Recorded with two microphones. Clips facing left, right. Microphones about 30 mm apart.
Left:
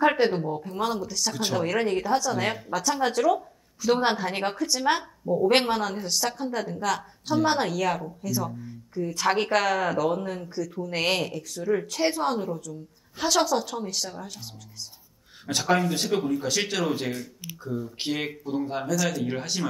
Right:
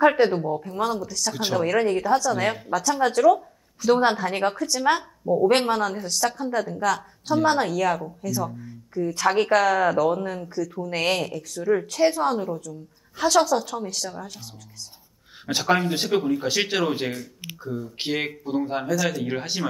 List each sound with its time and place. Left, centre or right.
0.0 s a woman's voice: centre
1.3 s a woman's voice: centre
15.7 s speech: centre
17.6 s a woman's voice: centre
17.9 s speech: centre